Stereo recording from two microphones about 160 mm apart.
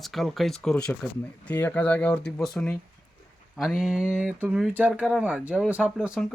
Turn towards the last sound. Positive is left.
turn(degrees=-5)  # may be behind; listen again after turning